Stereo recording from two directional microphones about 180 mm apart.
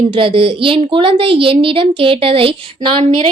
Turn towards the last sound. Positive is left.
turn(degrees=-30)  # may be behind; listen again after turning